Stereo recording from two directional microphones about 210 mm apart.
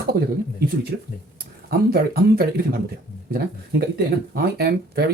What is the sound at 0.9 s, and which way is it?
Speech, 50° right (ahead or behind).